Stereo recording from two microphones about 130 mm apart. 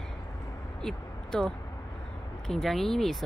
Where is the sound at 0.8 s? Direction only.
5° left (ahead or behind).